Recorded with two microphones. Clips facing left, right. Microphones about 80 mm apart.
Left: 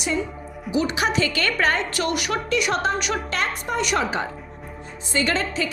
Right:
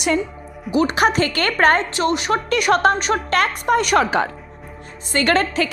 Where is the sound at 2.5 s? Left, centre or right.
Right.